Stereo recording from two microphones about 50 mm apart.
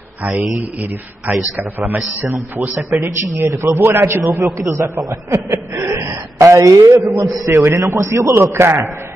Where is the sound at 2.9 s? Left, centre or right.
Right.